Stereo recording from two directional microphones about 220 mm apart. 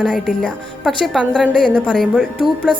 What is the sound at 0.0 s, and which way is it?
A woman's voice, 5° left (ahead or behind).